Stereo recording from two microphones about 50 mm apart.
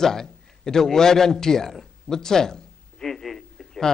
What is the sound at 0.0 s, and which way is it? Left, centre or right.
A man's voice, centre.